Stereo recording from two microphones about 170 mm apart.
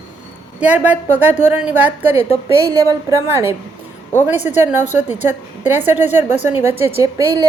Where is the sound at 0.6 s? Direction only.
10° right (ahead or behind).